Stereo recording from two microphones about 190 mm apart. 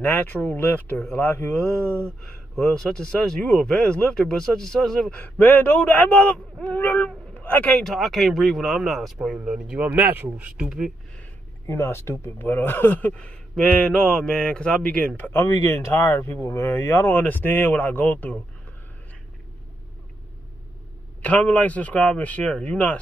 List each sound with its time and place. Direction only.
0.0 s speech: 10° left (ahead or behind)
11.6 s speech: 15° left (ahead or behind)
21.2 s speech: 5° left (ahead or behind)